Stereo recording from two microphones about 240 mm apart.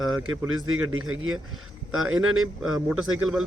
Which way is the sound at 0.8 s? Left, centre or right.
Right.